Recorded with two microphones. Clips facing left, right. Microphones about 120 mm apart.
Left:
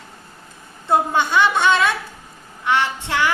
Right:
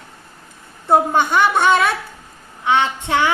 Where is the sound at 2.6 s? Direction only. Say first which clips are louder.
Right 3 dB; 20° right (ahead or behind).